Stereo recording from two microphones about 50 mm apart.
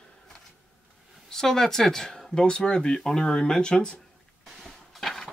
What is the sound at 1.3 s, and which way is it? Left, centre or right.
Speech, centre.